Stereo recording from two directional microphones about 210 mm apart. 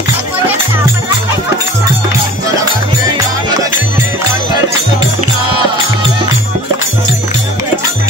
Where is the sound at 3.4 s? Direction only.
20° right (ahead or behind).